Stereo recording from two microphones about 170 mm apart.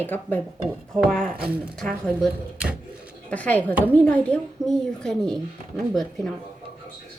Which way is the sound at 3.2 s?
10° left (ahead or behind).